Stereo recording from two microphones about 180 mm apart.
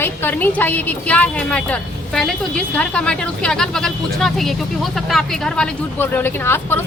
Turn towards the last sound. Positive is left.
turn(degrees=10)  # may be behind; listen again after turning